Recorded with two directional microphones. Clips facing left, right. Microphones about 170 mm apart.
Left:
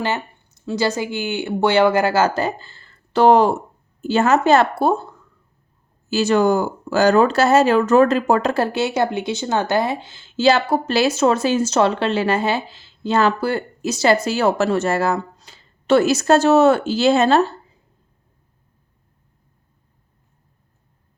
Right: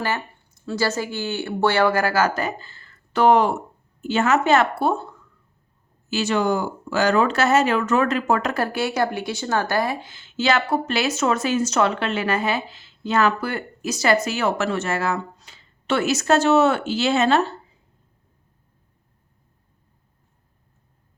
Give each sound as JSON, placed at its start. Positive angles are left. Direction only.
{"t": 0.6, "sound": "speech", "side_deg": 15}